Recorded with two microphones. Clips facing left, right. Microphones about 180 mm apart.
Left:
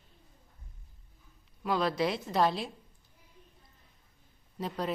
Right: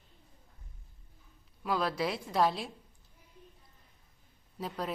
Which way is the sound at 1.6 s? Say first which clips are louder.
Left 3 dB; 5° right (ahead or behind).